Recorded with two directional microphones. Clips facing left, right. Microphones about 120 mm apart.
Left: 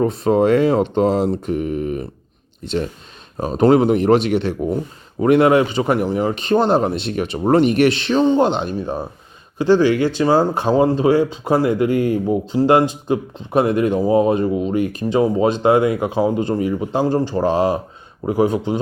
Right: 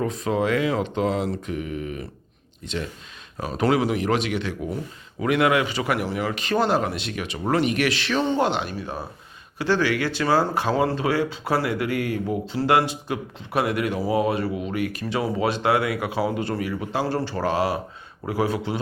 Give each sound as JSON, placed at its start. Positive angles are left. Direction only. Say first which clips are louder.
{"t": 0.0, "sound": "speech", "louder": "left 8 dB", "side_deg": 35}
{"t": 1.5, "sound": "speech", "louder": "left 8 dB", "side_deg": 45}
{"t": 3.7, "sound": "speech", "louder": "left 8 dB", "side_deg": 45}
{"t": 4.1, "sound": "speech", "louder": "left 9 dB", "side_deg": 30}